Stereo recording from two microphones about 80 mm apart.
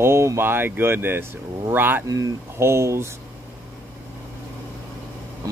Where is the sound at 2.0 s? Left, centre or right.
Right.